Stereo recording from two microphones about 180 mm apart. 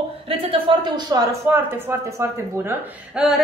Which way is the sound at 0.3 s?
30° right (ahead or behind).